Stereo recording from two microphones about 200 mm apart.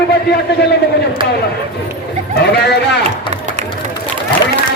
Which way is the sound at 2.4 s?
55° left (ahead or behind).